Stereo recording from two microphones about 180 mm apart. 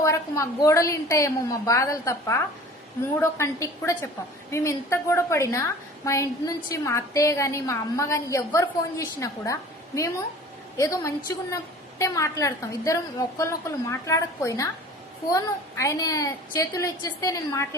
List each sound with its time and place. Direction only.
0.0 s a woman's voice: 15° left (ahead or behind)